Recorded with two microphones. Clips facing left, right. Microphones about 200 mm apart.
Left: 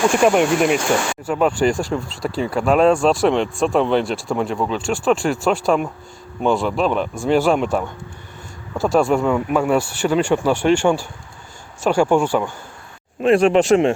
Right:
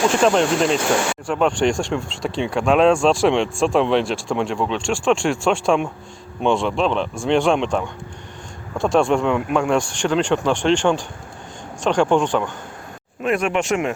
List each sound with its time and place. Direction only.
0.2 s speech: 10° left (ahead or behind)
13.2 s speech: 30° left (ahead or behind)